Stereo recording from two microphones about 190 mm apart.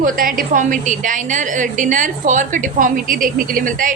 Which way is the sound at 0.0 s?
50° right (ahead or behind).